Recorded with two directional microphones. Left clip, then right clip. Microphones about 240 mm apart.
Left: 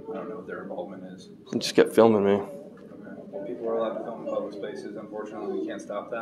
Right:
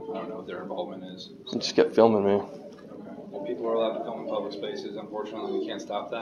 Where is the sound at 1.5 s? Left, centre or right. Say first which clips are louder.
Left 2 dB; left.